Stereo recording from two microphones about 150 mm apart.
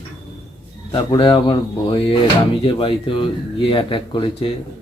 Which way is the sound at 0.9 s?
25° left (ahead or behind).